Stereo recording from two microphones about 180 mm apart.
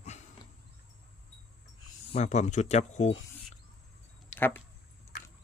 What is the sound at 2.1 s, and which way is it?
Speech, 40° left (ahead or behind).